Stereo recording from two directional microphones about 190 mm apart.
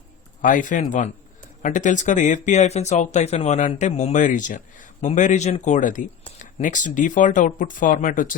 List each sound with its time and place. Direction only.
0.4 s speech: 45° left (ahead or behind)